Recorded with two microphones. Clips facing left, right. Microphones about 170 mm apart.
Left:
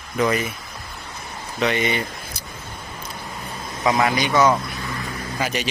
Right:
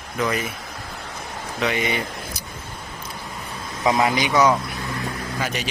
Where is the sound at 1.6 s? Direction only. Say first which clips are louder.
Left 2 dB; 5° right (ahead or behind).